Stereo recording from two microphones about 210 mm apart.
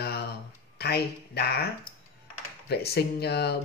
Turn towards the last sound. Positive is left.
turn(degrees=50)  # may be behind; listen again after turning